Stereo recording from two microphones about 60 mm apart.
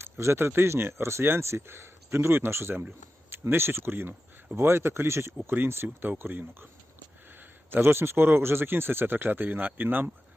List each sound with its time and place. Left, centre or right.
0.0 s speech: right
7.7 s speech: right